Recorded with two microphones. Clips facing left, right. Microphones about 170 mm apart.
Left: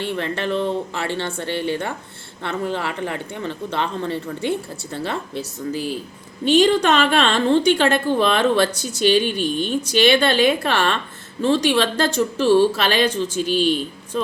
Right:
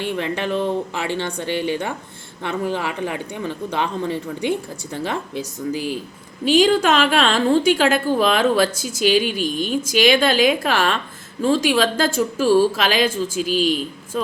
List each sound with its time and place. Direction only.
0.0 s a woman's voice: 15° right (ahead or behind)